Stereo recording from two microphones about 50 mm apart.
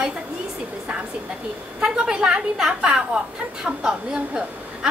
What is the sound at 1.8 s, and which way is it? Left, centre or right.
A woman's voice, centre.